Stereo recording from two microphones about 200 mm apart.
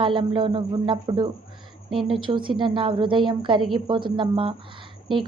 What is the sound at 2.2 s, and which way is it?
A woman's voice, 25° right (ahead or behind).